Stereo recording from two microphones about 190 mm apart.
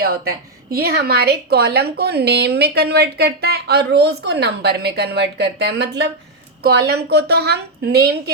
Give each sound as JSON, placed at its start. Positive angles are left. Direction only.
{"t": 0.0, "sound": "a woman's voice", "side_deg": -50}